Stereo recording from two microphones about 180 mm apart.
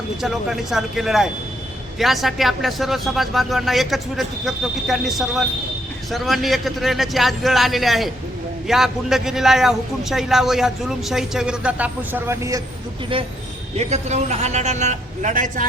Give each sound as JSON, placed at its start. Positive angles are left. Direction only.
{"t": 0.2, "sound": "a man's voice", "side_deg": 0}
{"t": 13.7, "sound": "a man's voice", "side_deg": -40}